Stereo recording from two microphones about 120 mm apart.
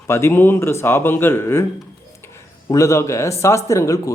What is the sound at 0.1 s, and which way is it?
Speech, 20° left (ahead or behind).